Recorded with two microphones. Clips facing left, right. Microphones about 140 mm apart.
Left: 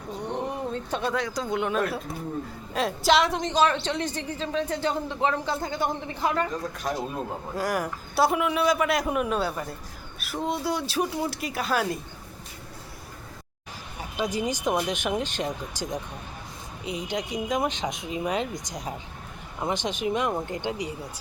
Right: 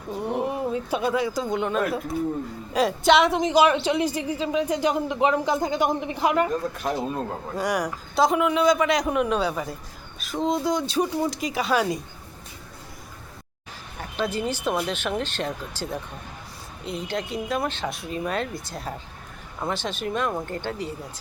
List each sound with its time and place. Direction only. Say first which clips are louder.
0.1 s a woman's voice: right 4 dB; 5° right (ahead or behind)
7.5 s speech: right 2 dB; 5° left (ahead or behind)
14.0 s speech: right 1 dB; 10° left (ahead or behind)